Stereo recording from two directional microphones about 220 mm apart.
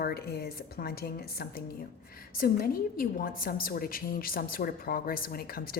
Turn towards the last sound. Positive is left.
turn(degrees=40)  # may be behind; listen again after turning